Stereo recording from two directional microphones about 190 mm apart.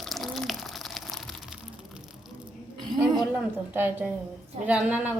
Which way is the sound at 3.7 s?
10° right (ahead or behind).